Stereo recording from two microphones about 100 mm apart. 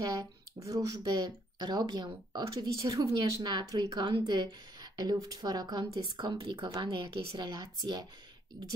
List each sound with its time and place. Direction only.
0.0 s speech: 35° right (ahead or behind); by 2.6 s 60° right (ahead or behind)
2.6 s speech: 40° right (ahead or behind)
3.1 s speech: 50° right (ahead or behind)
7.3 s speech: 45° right (ahead or behind)